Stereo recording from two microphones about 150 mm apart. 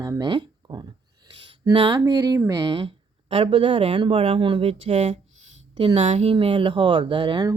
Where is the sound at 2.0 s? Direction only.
20° right (ahead or behind).